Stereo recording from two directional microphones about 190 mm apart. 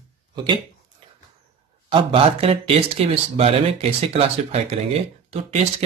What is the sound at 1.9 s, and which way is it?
Speech, 30° right (ahead or behind).